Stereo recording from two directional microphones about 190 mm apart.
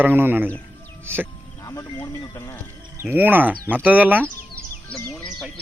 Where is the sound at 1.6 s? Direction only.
20° left (ahead or behind).